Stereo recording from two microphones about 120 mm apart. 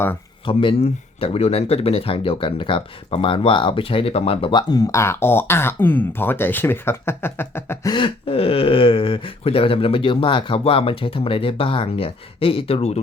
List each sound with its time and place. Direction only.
0.4 s speech: 45° left (ahead or behind)
1.2 s speech: 55° left (ahead or behind)
4.7 s speech: 25° left (ahead or behind)
7.9 s speech: 40° left (ahead or behind); by 13.0 s 60° left (ahead or behind)